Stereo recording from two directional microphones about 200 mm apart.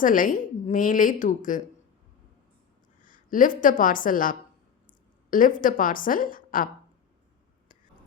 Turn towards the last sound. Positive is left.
turn(degrees=45)  # may be behind; listen again after turning